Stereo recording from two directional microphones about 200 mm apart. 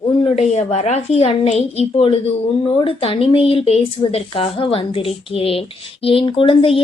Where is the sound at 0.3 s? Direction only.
35° left (ahead or behind).